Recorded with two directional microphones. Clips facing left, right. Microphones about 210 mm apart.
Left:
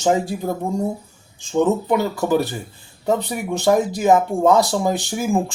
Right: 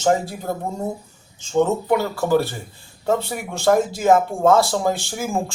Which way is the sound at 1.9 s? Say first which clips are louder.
Even; 20° left (ahead or behind).